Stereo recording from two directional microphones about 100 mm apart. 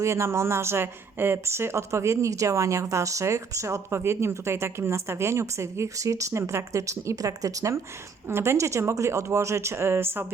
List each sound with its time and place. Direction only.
0.0 s speech: 25° right (ahead or behind)